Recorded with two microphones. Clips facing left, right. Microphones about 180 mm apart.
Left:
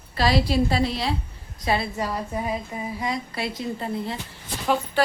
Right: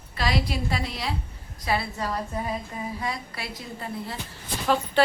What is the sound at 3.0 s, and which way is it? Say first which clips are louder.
A woman's voice: left 5 dB; 20° left (ahead or behind).